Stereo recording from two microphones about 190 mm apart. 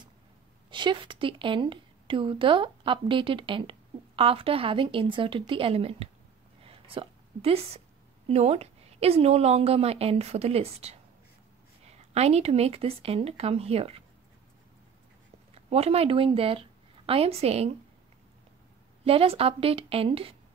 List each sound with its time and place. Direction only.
0.7 s a woman's voice: 25° right (ahead or behind)
6.6 s a sound: 30° right (ahead or behind)
8.3 s a woman's voice: 35° right (ahead or behind)
15.5 s speech: 30° right (ahead or behind)
19.0 s a woman's voice: 30° right (ahead or behind)